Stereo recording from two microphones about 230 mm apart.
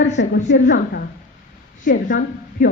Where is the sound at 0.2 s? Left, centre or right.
Left.